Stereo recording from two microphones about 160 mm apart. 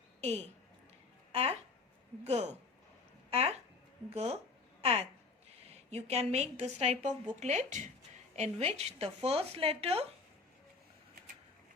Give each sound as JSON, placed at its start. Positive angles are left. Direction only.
{"t": 0.2, "sound": "a woman's voice", "side_deg": -45}